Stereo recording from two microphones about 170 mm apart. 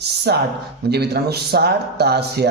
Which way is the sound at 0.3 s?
75° right (ahead or behind).